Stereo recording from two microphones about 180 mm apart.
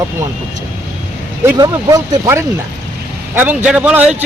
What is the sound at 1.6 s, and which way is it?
Speech, 20° right (ahead or behind).